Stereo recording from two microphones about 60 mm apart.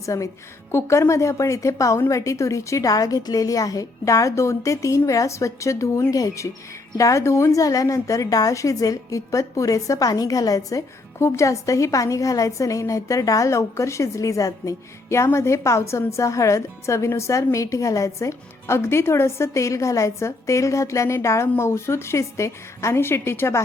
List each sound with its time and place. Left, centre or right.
0.0 s a woman's voice: left
0.7 s a woman's voice: left
11.2 s a woman's voice: left